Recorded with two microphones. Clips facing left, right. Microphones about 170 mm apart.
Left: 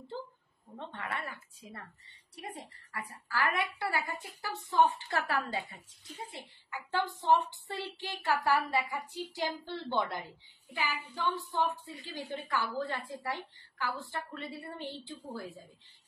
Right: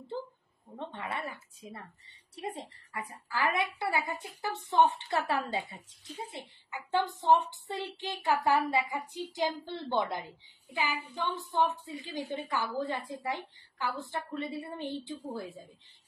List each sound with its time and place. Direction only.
0.7 s a woman's voice: 20° right (ahead or behind)
11.3 s a woman's voice: 20° right (ahead or behind)